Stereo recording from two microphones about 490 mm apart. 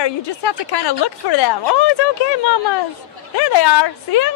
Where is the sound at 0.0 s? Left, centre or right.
Left.